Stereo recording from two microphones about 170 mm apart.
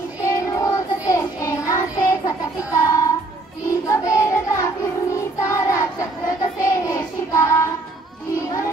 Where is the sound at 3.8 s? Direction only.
20° left (ahead or behind).